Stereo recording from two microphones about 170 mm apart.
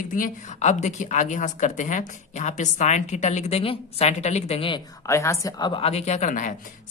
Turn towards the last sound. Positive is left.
turn(degrees=45)  # may be behind; listen again after turning